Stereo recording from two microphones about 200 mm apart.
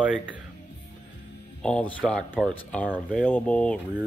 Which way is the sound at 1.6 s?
5° left (ahead or behind).